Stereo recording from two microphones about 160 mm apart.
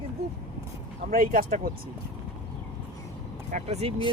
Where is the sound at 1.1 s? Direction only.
60° right (ahead or behind).